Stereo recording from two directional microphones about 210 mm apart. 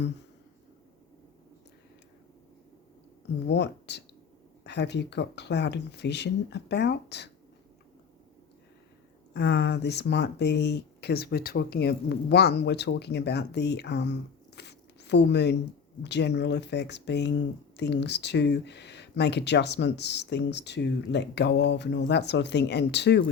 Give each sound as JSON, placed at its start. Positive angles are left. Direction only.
{"t": 3.4, "sound": "speech", "side_deg": 55}
{"t": 9.3, "sound": "speech", "side_deg": 50}